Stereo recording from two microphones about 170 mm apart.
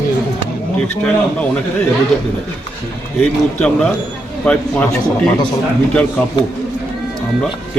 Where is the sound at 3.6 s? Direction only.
5° left (ahead or behind).